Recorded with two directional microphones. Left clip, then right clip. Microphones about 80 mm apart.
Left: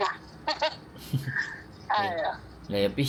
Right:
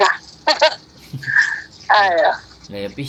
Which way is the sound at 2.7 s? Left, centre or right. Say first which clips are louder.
Left 1 dB; centre.